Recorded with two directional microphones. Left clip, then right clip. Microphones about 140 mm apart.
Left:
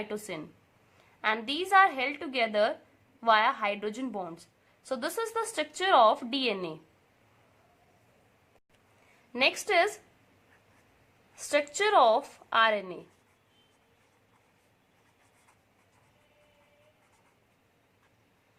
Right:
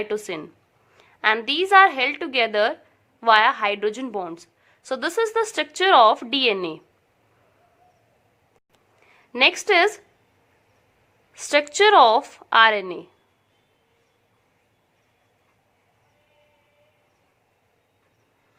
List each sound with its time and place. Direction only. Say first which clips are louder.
0.0 s a woman's voice: right 10 dB; 20° right (ahead or behind)
9.3 s a woman's voice: right 8 dB; 20° right (ahead or behind)
11.3 s a woman's voice: right 9 dB; 20° right (ahead or behind)